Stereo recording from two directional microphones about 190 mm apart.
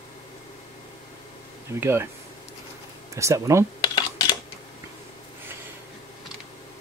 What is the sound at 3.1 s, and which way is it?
Speech, 15° right (ahead or behind).